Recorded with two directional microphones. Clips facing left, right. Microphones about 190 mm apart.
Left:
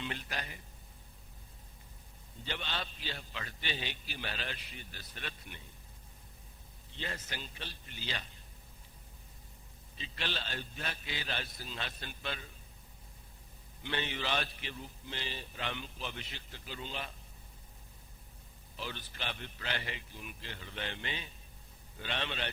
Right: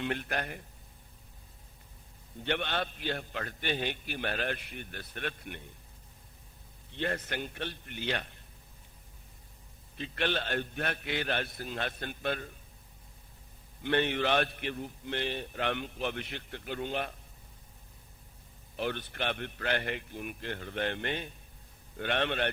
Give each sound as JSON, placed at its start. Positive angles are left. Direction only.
{"t": 0.0, "sound": "a man's voice", "side_deg": -55}
{"t": 2.4, "sound": "a man's voice", "side_deg": -60}
{"t": 6.9, "sound": "a man's voice", "side_deg": -60}
{"t": 10.0, "sound": "a man's voice", "side_deg": -60}
{"t": 13.8, "sound": "a man's voice", "side_deg": -55}
{"t": 18.8, "sound": "a man's voice", "side_deg": -60}